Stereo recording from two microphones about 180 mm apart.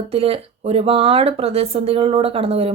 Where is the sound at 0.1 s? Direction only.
35° right (ahead or behind).